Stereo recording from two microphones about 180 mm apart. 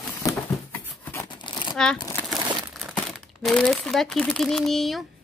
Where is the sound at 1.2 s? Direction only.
25° left (ahead or behind).